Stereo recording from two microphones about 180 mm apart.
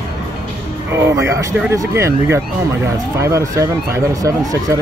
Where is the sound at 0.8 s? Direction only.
15° right (ahead or behind).